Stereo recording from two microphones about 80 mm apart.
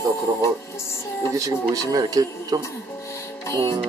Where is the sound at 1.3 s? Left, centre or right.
Right.